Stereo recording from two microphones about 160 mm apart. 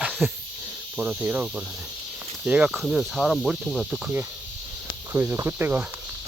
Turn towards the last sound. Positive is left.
turn(degrees=-10)  # may be behind; listen again after turning